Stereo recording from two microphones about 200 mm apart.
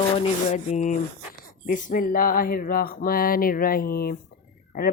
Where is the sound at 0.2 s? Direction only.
35° left (ahead or behind).